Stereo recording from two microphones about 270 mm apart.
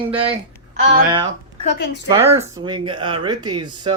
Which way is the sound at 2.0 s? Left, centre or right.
Centre.